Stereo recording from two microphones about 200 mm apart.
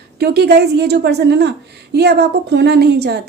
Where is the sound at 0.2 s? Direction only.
55° right (ahead or behind).